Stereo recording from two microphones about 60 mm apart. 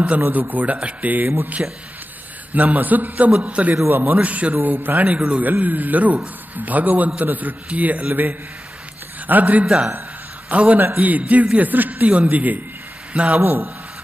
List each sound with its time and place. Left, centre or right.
0.3 s a man's voice: right
13.4 s a man's voice: right